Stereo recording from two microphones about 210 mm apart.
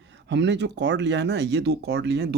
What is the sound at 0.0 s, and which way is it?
Speech, 55° right (ahead or behind).